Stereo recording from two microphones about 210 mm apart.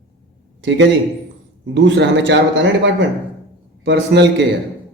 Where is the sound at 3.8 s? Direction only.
55° right (ahead or behind).